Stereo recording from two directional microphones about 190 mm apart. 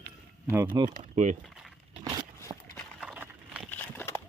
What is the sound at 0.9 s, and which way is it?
Speech, 40° right (ahead or behind).